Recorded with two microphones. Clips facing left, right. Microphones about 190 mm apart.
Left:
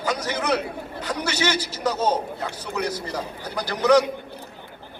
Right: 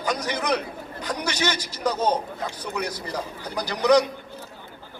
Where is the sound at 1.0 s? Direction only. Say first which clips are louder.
Left 1 dB; 10° right (ahead or behind).